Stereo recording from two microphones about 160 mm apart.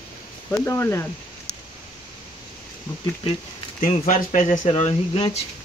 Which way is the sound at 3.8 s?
55° left (ahead or behind).